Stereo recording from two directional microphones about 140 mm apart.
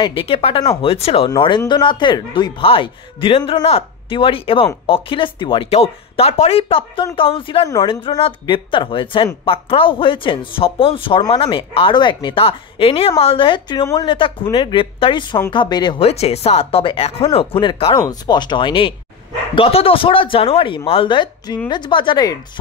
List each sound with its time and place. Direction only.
0.0 s speech: 40° left (ahead or behind)
16.1 s speech: 45° left (ahead or behind)
17.9 s speech: 25° left (ahead or behind)